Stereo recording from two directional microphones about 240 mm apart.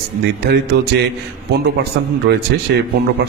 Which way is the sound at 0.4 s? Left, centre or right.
Right.